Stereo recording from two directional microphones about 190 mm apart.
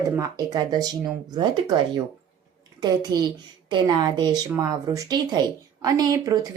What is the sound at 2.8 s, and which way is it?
A woman's voice, 20° right (ahead or behind).